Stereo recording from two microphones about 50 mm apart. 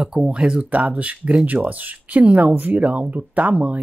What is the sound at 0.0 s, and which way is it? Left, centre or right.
Speech, centre.